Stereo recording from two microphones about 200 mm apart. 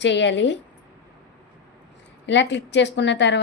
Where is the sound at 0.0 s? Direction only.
65° left (ahead or behind).